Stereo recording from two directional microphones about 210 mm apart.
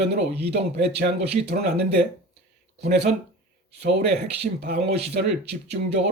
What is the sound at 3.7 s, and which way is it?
A man's voice, 50° right (ahead or behind).